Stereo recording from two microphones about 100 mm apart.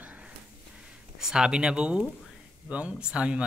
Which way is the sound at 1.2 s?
5° right (ahead or behind).